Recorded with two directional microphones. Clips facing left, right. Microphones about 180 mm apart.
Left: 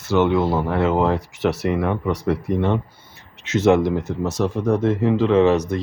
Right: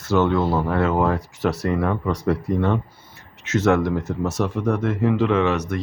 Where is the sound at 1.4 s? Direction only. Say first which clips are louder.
Left 2 dB; 80° left.